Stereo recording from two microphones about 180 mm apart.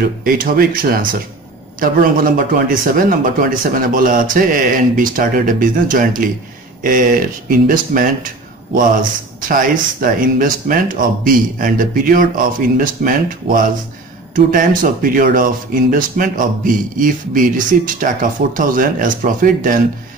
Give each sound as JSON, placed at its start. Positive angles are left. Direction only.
{"t": 0.0, "sound": "speech", "side_deg": -55}
{"t": 9.5, "sound": "speech", "side_deg": -50}